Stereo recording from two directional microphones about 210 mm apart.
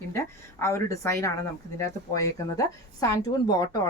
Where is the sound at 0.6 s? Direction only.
15° left (ahead or behind).